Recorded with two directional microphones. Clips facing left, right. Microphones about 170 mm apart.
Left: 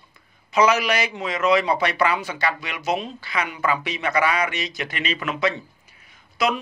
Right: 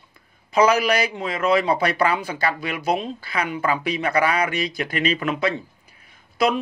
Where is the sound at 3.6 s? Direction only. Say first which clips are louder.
Right 1 dB; 30° right (ahead or behind).